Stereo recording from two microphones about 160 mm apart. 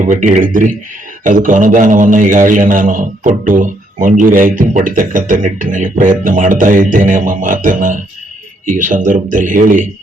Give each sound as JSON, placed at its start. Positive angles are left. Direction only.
{"t": 0.0, "sound": "a man's voice", "side_deg": -50}